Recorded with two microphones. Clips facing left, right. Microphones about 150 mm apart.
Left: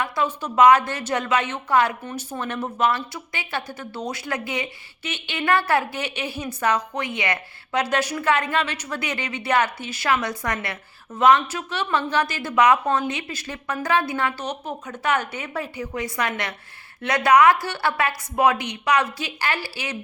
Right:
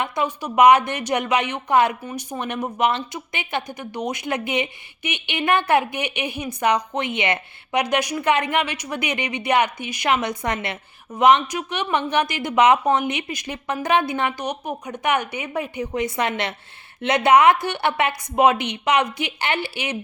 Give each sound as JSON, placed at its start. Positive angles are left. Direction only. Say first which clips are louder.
{"t": 0.0, "sound": "a woman's voice", "louder": "right 1 dB", "side_deg": -15}